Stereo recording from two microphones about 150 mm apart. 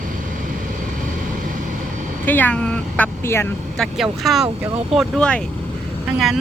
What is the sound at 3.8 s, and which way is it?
Speech, centre (ahead or behind).